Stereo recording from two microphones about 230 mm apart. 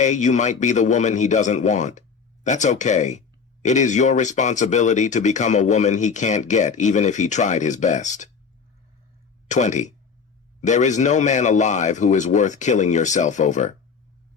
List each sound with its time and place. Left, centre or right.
0.0 s speech: left
9.5 s speech: left